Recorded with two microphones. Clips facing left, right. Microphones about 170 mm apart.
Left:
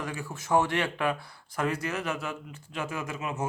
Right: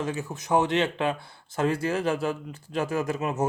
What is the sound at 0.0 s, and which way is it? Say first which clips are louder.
Speech: right 5 dB; 20° right (ahead or behind).